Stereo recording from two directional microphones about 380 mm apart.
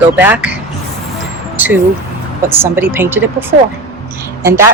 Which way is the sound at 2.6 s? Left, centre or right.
Centre.